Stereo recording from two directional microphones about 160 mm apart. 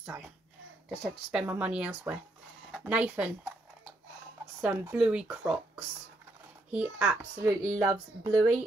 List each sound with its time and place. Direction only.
0.8 s speech: centre (ahead or behind)
4.6 s speech: 10° right (ahead or behind)